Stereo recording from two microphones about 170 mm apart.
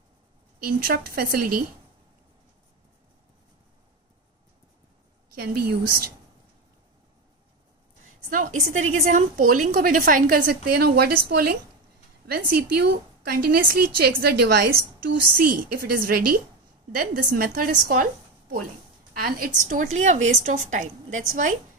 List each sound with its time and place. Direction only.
0.6 s a woman's voice: 60° right (ahead or behind)
5.3 s a woman's voice: 60° right (ahead or behind)
8.3 s a woman's voice: 50° right (ahead or behind)
19.1 s a woman's voice: 60° right (ahead or behind)